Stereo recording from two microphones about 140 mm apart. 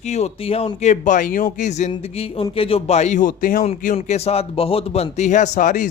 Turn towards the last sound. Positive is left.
turn(degrees=65)  # may be behind; listen again after turning